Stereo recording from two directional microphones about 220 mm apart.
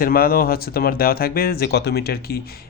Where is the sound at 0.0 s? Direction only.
40° left (ahead or behind).